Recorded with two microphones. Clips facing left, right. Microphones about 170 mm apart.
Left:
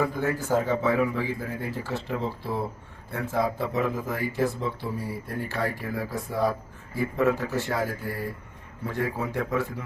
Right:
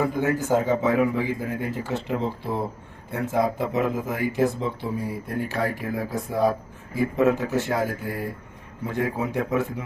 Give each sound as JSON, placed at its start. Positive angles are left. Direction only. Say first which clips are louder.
{"t": 0.0, "sound": "speech", "louder": "right 3 dB", "side_deg": -20}